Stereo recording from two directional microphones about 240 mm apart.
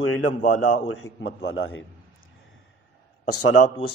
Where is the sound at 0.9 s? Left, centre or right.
Left.